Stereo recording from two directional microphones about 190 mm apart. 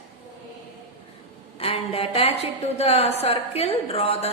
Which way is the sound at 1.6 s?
30° left (ahead or behind).